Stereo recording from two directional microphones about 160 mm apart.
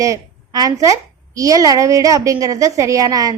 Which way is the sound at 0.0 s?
20° right (ahead or behind).